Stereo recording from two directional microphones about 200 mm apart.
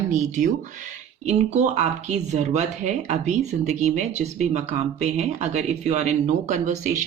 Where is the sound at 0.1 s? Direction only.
40° right (ahead or behind).